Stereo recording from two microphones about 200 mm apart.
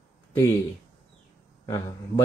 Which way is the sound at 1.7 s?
15° left (ahead or behind).